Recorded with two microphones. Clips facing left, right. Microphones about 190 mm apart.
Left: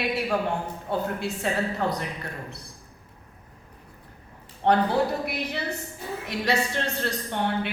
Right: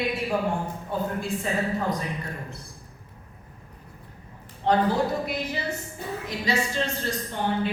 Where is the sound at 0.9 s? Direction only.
75° left (ahead or behind).